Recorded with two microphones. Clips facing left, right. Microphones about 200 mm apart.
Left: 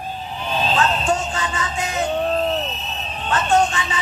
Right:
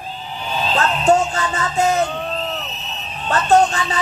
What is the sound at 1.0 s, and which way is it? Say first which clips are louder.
Speech: right 6 dB; 40° right (ahead or behind).